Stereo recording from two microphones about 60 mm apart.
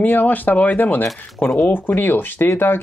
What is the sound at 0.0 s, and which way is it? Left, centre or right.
Speech, left.